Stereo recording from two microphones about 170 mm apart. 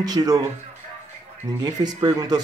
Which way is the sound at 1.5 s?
25° right (ahead or behind).